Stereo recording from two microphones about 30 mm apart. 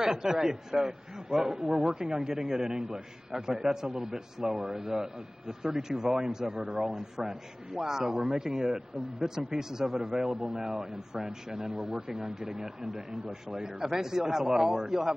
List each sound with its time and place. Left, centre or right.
0.0 s a man's voice: centre
3.5 s a man's voice: centre; by 6.6 s right
6.6 s a man's voice: centre